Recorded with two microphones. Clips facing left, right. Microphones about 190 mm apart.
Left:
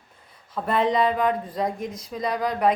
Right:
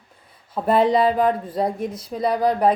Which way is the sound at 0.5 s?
35° right (ahead or behind).